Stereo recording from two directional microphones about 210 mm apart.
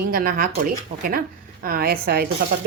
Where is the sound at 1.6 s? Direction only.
45° right (ahead or behind).